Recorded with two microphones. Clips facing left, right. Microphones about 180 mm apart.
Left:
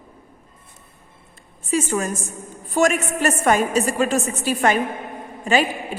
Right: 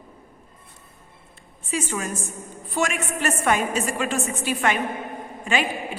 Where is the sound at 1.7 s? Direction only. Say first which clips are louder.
Left 6 dB; 40° left (ahead or behind).